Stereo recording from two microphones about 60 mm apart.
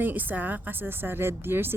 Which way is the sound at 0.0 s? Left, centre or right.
Right.